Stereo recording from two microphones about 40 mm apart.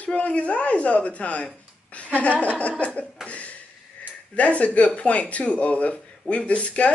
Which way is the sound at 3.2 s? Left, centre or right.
Left.